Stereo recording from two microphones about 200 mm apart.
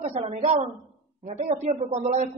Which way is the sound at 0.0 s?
30° right (ahead or behind).